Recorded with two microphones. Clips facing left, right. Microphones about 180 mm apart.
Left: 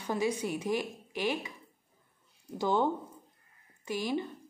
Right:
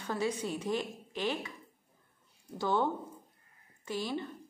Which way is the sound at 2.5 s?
15° left (ahead or behind).